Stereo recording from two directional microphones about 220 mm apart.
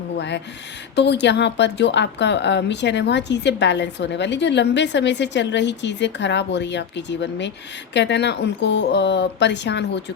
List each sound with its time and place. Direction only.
0.2 s a woman's voice: 55° left (ahead or behind)